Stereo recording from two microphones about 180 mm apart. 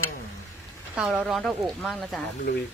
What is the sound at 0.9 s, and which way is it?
Speech, 5° right (ahead or behind).